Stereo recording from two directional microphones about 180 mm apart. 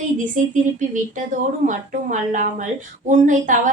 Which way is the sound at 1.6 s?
45° right (ahead or behind).